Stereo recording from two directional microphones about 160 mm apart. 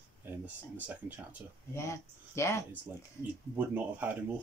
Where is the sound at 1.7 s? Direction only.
15° left (ahead or behind).